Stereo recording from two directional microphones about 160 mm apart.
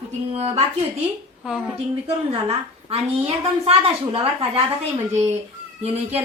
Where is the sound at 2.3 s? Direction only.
35° right (ahead or behind).